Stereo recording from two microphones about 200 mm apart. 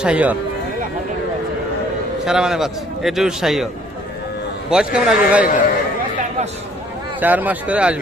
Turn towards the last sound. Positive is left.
turn(degrees=-5)  # may be behind; listen again after turning